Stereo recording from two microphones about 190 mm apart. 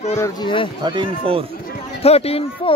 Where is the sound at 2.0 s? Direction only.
30° left (ahead or behind).